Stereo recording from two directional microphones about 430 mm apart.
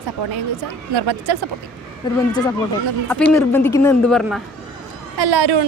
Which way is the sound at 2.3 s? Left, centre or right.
Centre.